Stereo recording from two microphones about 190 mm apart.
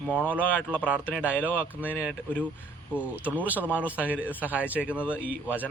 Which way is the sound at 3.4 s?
10° right (ahead or behind).